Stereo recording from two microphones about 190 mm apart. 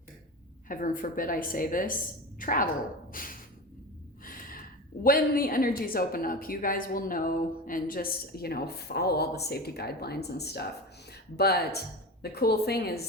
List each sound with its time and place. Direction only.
0.7 s a woman's voice: 45° left (ahead or behind)
3.1 s a sound: 45° left (ahead or behind)
4.2 s gasp: 50° left (ahead or behind)
5.0 s a woman's voice: 50° left (ahead or behind)